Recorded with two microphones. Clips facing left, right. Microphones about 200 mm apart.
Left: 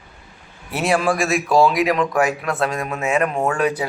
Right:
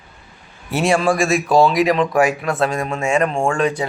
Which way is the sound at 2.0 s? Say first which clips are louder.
Right 3 dB; 25° right (ahead or behind).